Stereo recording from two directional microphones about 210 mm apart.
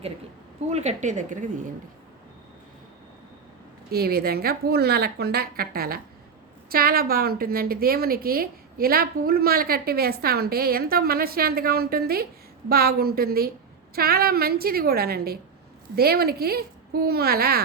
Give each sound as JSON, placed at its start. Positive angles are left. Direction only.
{"t": 0.7, "sound": "a woman's voice", "side_deg": -30}
{"t": 3.9, "sound": "a woman's voice", "side_deg": -50}